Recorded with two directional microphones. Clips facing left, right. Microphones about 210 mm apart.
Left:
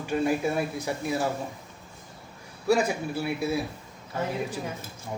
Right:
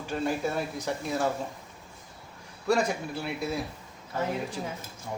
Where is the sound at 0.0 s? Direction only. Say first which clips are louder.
Left 4 dB; 10° left (ahead or behind).